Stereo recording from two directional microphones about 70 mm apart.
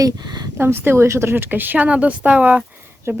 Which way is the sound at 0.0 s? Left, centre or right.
Right.